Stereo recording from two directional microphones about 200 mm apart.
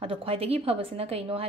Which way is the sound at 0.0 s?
25° right (ahead or behind).